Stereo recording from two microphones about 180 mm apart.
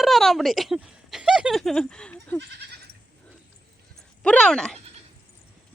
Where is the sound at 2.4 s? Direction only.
65° right (ahead or behind).